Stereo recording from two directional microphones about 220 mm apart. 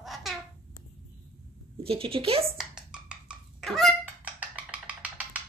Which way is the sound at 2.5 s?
5° right (ahead or behind).